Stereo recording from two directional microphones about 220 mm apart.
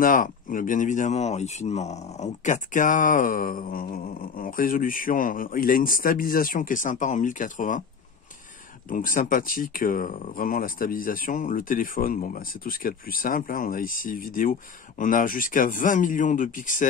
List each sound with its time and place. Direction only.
0.0 s speech: 40° left (ahead or behind)
8.8 s speech: 40° left (ahead or behind)